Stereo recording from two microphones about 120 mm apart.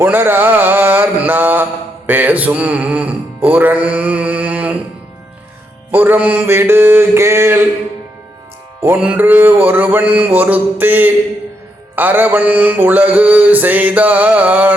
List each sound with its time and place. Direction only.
0.0 s mantra: 15° right (ahead or behind)
2.0 s music: 15° right (ahead or behind)
5.9 s music: 15° right (ahead or behind)
8.8 s mantra: 15° right (ahead or behind)